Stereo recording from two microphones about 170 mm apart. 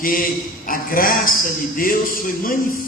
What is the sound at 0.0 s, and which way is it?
A man's voice, 55° left (ahead or behind).